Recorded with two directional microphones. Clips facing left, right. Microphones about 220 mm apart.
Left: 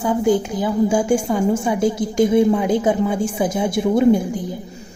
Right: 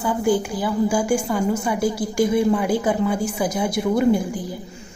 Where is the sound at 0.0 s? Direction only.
20° left (ahead or behind).